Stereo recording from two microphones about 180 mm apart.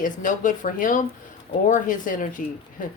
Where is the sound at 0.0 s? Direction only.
45° left (ahead or behind).